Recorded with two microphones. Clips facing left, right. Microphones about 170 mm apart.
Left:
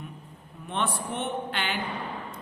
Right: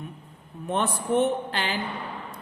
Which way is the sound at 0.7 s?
40° right (ahead or behind).